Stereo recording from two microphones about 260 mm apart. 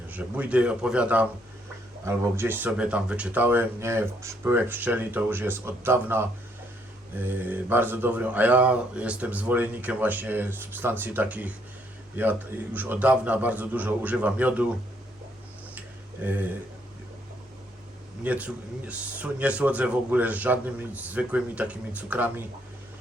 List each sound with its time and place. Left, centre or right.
0.1 s a man's voice: centre
18.2 s a man's voice: centre